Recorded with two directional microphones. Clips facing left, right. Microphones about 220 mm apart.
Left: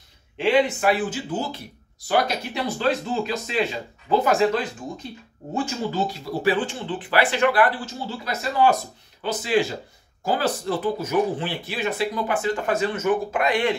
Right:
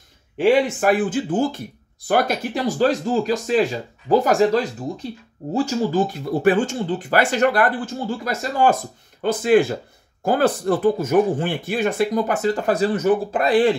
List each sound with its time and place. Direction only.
0.4 s speech: 45° right (ahead or behind)